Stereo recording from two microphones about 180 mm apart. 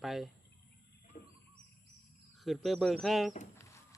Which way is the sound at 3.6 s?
15° left (ahead or behind).